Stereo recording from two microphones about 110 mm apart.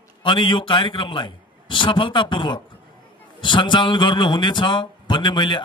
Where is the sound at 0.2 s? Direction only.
50° left (ahead or behind).